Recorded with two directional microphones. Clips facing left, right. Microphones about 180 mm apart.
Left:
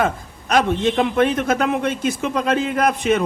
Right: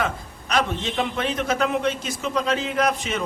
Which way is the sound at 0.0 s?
50° left (ahead or behind).